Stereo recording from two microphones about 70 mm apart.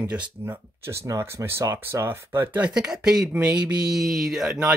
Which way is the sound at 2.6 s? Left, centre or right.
Centre.